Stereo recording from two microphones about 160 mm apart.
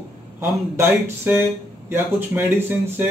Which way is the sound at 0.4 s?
15° right (ahead or behind).